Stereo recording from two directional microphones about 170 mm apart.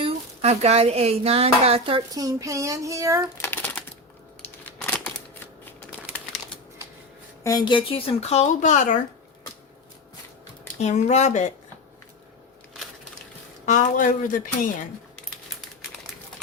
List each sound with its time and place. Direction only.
0.0 s speech: 40° right (ahead or behind); by 3.2 s 20° right (ahead or behind)
3.3 s a sound: 15° left (ahead or behind)
7.4 s speech: 25° left (ahead or behind)
8.3 s speech: 45° left (ahead or behind)
10.8 s speech: 40° left (ahead or behind)
13.7 s speech: 50° left (ahead or behind)